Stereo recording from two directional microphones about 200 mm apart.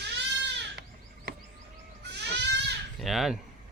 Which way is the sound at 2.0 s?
55° right (ahead or behind).